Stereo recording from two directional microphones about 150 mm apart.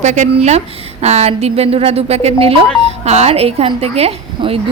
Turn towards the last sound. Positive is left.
turn(degrees=-40)  # may be behind; listen again after turning